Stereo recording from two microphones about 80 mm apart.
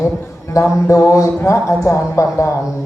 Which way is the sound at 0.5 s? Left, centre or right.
Left.